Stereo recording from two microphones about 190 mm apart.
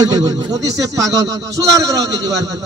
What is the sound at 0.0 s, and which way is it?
Speech, 20° right (ahead or behind).